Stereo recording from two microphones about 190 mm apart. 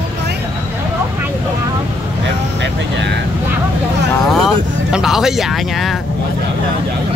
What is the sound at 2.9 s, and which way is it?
Speech, 65° right (ahead or behind).